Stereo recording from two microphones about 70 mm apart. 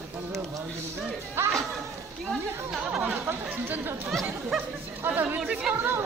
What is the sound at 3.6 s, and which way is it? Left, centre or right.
Speech, right.